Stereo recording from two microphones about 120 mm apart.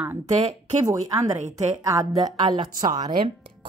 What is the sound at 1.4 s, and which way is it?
Speech, 65° right (ahead or behind).